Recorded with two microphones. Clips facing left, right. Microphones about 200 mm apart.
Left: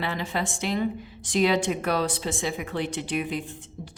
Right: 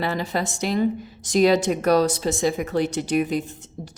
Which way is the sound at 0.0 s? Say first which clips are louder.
Right 4 dB; 40° right (ahead or behind).